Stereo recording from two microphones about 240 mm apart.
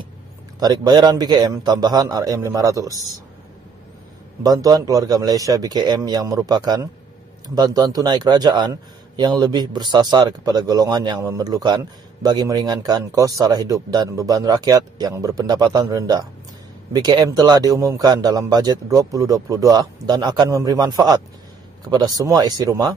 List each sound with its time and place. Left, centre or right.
0.6 s a man's voice: centre
4.4 s a man's voice: centre